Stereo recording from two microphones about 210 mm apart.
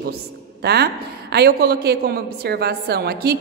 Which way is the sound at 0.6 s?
45° right (ahead or behind).